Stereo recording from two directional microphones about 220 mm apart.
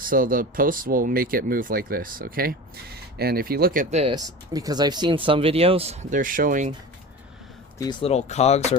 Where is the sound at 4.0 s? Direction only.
20° right (ahead or behind); by 6.7 s 35° right (ahead or behind).